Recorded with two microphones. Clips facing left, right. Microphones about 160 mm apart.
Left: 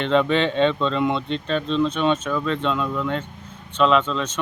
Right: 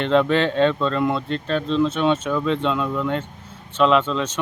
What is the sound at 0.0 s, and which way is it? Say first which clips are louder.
Speech: right 1 dB; 10° right (ahead or behind).